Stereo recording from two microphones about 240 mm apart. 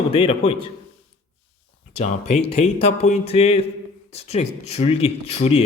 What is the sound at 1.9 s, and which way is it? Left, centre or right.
Speech, left.